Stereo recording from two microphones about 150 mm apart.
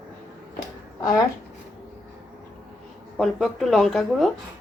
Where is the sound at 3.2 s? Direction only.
Centre (ahead or behind).